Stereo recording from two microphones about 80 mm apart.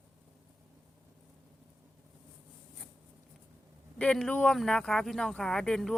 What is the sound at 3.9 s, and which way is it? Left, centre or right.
Speech, centre.